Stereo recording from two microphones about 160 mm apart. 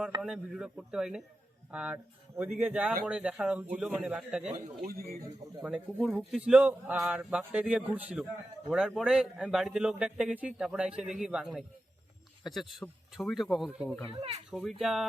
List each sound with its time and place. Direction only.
0.2 s a man's voice: 5° right (ahead or behind)
14.1 s speech: 40° right (ahead or behind)
14.5 s a man's voice: centre (ahead or behind)